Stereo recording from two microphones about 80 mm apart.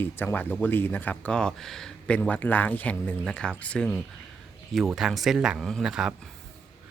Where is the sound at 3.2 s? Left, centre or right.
Centre.